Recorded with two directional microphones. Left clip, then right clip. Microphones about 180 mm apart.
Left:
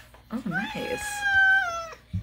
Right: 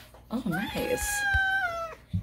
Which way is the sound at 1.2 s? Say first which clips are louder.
Left 7 dB; 5° right (ahead or behind).